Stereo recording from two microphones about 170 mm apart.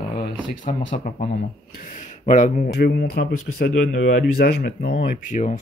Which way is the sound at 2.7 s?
70° left (ahead or behind).